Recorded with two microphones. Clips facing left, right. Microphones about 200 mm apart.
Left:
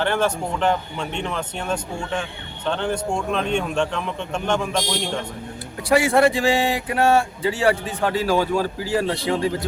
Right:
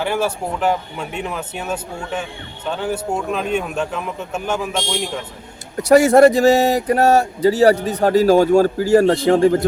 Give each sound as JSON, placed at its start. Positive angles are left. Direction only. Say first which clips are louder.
{"t": 0.0, "sound": "speech", "louder": "right 1 dB", "side_deg": -10}
{"t": 5.7, "sound": "speech", "louder": "right 7 dB", "side_deg": -45}